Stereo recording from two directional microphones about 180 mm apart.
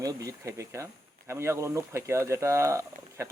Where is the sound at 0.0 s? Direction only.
20° right (ahead or behind).